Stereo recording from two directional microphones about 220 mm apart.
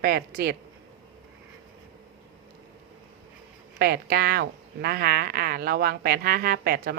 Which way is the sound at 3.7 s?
45° right (ahead or behind).